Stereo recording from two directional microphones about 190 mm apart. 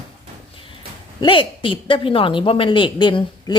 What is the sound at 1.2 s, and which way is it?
Speech, 25° left (ahead or behind).